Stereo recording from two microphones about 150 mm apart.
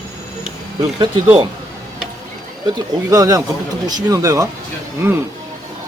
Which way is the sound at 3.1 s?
20° right (ahead or behind).